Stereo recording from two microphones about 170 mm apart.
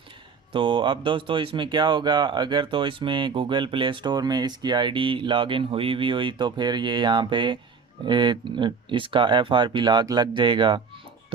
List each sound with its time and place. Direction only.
0.5 s speech: 30° right (ahead or behind)